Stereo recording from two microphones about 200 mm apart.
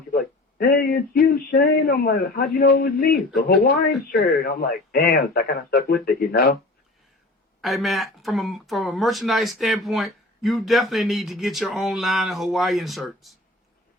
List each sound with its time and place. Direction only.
0.1 s speech: 50° left (ahead or behind)
7.6 s speech: centre (ahead or behind)